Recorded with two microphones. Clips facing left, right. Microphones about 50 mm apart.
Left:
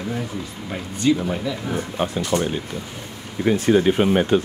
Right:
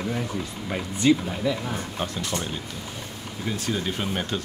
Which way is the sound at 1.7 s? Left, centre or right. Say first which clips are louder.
Left 6 dB; centre.